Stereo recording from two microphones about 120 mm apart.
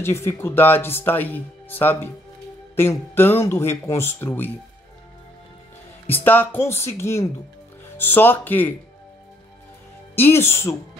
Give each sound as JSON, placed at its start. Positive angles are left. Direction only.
{"t": 0.0, "sound": "speech", "side_deg": 20}
{"t": 6.0, "sound": "speech", "side_deg": 15}
{"t": 10.1, "sound": "speech", "side_deg": 20}